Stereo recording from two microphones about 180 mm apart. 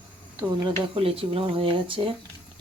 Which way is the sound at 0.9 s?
30° right (ahead or behind).